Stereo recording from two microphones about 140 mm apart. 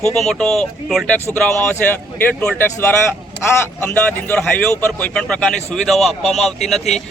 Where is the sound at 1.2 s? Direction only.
15° left (ahead or behind).